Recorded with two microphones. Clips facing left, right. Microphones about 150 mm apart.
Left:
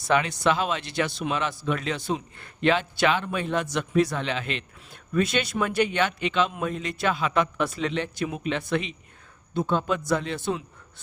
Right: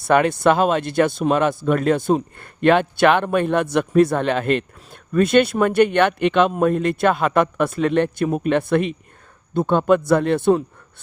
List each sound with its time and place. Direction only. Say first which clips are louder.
0.0 s speech: right 7 dB; 55° right (ahead or behind)